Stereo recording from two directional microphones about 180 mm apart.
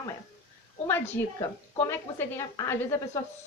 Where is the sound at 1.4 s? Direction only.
15° left (ahead or behind).